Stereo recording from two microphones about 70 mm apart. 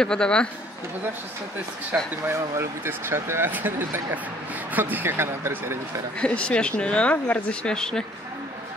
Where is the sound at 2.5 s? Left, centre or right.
Right.